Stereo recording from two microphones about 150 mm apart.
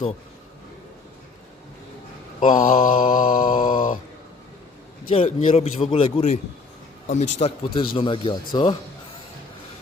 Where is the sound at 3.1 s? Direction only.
65° left (ahead or behind).